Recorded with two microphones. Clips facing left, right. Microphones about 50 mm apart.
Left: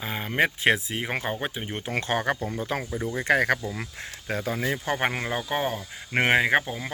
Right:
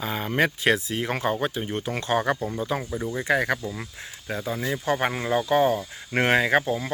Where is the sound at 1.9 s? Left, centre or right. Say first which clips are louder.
Right 1 dB; left.